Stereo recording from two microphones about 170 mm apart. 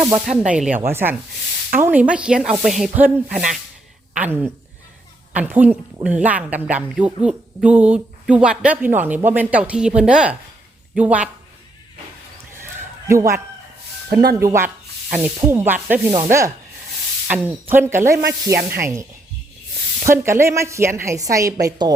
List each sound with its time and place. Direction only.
0.3 s a woman's voice: 5° right (ahead or behind)
13.1 s a woman's voice: 15° right (ahead or behind)
14.1 s speech: 65° right (ahead or behind)
14.3 s a woman's voice: 15° right (ahead or behind)
20.1 s a woman's voice: 15° right (ahead or behind)